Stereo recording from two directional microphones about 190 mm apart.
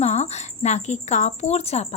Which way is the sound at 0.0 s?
35° left (ahead or behind).